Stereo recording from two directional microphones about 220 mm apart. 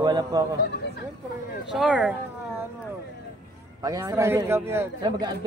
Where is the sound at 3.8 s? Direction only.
15° right (ahead or behind).